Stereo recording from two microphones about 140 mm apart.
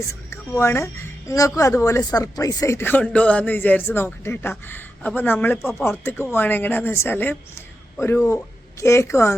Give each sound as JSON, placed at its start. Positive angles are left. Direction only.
{"t": 0.0, "sound": "a woman's voice", "side_deg": 20}